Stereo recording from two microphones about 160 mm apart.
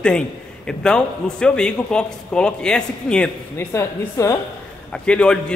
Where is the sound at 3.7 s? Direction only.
20° left (ahead or behind).